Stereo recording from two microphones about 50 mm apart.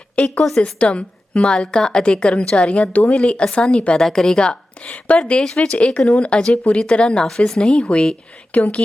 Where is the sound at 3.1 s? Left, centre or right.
Centre.